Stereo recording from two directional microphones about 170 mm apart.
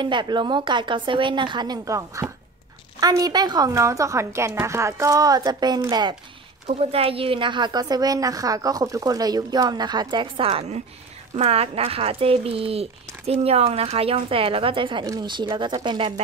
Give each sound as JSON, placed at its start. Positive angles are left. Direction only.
{"t": 0.0, "sound": "a woman's voice", "side_deg": -25}
{"t": 6.7, "sound": "a woman's voice", "side_deg": -35}